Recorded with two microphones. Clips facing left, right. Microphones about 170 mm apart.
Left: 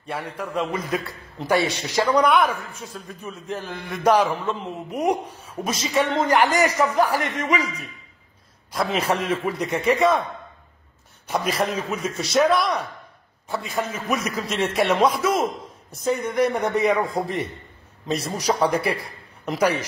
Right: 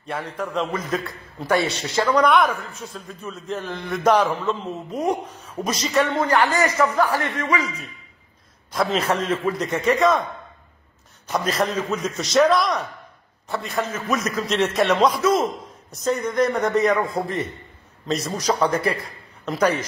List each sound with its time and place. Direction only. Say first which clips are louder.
0.0 s a man's voice: right 2 dB; 10° left (ahead or behind)
6.1 s a man's voice: left 1 dB; 15° left (ahead or behind)
8.7 s a man's voice: right 1 dB; 10° left (ahead or behind)
11.3 s a man's voice: right 1 dB; 10° left (ahead or behind)